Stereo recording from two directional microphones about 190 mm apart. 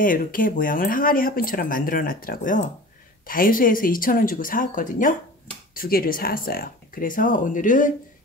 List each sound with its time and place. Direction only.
0.0 s speech: 45° left (ahead or behind)